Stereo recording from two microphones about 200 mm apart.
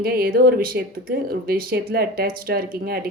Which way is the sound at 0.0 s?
50° right (ahead or behind).